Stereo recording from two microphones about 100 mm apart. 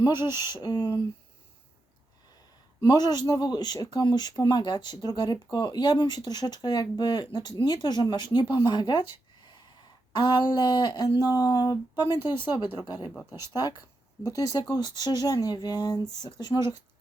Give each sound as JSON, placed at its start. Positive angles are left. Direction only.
{"t": 0.0, "sound": "speech", "side_deg": 45}
{"t": 2.8, "sound": "speech", "side_deg": 45}
{"t": 10.1, "sound": "speech", "side_deg": 45}